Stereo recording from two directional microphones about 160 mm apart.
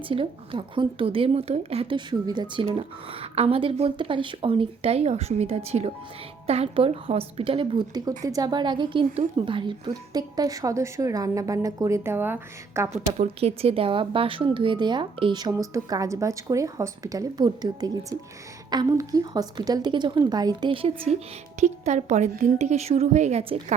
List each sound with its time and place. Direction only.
0.1 s a woman's voice: 30° right (ahead or behind); by 12.9 s 15° right (ahead or behind)
12.9 s speech: 40° right (ahead or behind)
21.6 s a woman's voice: 45° right (ahead or behind)